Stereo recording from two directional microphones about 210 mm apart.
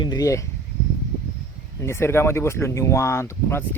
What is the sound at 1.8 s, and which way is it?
Speech, 10° left (ahead or behind).